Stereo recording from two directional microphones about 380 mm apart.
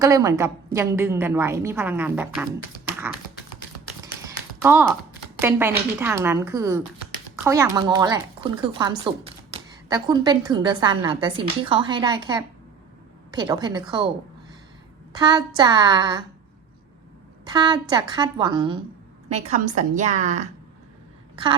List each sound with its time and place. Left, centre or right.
0.0 s a woman's voice: centre
4.0 s a sound: centre
5.4 s a woman's voice: centre
15.1 s a woman's voice: centre
17.4 s a woman's voice: centre